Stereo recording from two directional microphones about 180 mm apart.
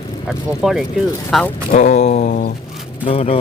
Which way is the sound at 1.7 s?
40° left (ahead or behind).